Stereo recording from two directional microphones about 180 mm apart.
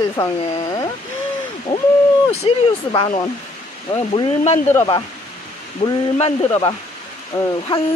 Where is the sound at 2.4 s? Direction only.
30° left (ahead or behind).